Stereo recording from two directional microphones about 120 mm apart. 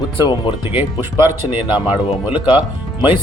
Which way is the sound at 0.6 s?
20° right (ahead or behind).